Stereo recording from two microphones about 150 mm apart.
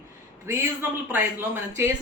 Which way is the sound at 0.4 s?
15° right (ahead or behind).